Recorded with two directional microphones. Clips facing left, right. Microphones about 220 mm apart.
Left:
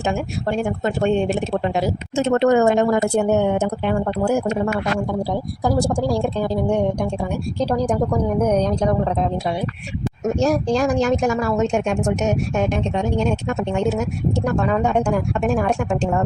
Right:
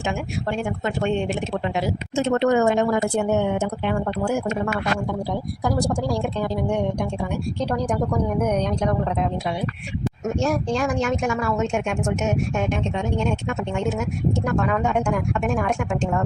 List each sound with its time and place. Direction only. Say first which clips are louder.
0.0 s speech: left 4 dB; 40° left (ahead or behind)
5.7 s speech: left 4 dB; 30° left (ahead or behind)
10.4 s speech: left 5 dB; 40° left (ahead or behind)